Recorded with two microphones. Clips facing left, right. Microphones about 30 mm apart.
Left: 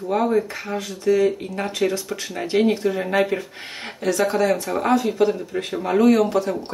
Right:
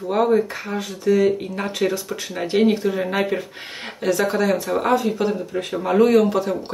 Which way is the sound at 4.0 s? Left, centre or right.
Right.